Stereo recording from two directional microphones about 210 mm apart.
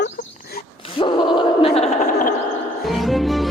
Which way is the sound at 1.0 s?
20° left (ahead or behind).